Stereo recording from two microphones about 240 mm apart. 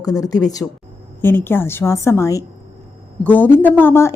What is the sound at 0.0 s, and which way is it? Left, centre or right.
A woman's voice, centre.